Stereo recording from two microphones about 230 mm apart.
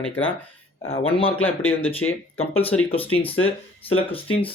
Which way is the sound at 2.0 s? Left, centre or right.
Left.